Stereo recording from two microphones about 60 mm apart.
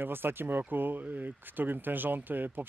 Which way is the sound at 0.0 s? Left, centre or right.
Right.